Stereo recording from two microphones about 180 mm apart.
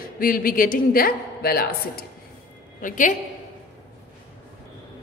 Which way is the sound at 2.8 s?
45° left (ahead or behind).